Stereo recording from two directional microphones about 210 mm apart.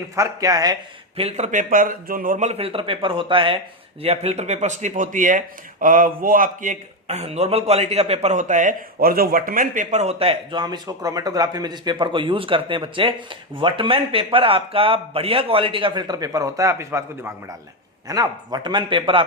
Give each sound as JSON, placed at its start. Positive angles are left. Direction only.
{"t": 0.2, "sound": "a man's voice", "side_deg": -15}